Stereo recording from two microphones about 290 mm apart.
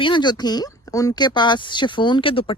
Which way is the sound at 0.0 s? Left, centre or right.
Centre.